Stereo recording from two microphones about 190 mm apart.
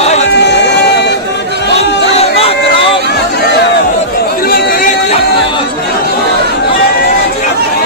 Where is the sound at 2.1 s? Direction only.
30° left (ahead or behind).